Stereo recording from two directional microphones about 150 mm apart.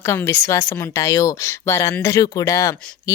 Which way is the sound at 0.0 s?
20° left (ahead or behind).